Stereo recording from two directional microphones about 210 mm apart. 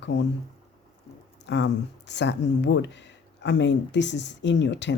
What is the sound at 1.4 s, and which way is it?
Speech, 55° left (ahead or behind).